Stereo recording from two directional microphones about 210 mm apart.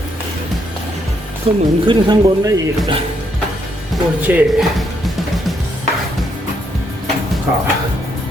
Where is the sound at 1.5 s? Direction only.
30° right (ahead or behind).